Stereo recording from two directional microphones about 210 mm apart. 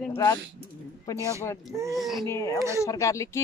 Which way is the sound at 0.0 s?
10° left (ahead or behind).